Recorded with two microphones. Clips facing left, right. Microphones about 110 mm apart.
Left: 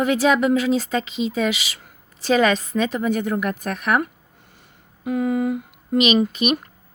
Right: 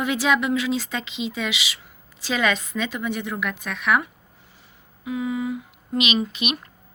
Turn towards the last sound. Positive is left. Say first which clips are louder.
# left 6 dB
turn(degrees=45)  # may be behind; listen again after turning